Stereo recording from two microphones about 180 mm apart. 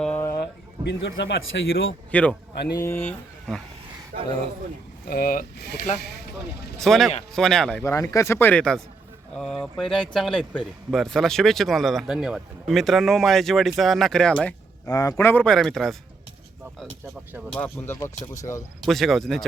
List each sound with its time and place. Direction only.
0.0 s a sound: 10° left (ahead or behind)
0.9 s speech: 85° left
2.1 s speech: 10° left (ahead or behind)
4.1 s speech: 60° right (ahead or behind)
5.0 s speech: 55° left (ahead or behind)
6.7 s speech: centre (ahead or behind)
7.9 s speech: 15° left (ahead or behind)
14.8 s speech: 20° left (ahead or behind); by 16.0 s centre (ahead or behind)
17.5 s speech: 10° left (ahead or behind)
18.9 s speech: centre (ahead or behind)